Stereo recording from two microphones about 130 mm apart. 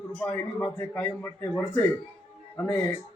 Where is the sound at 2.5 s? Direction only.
15° left (ahead or behind).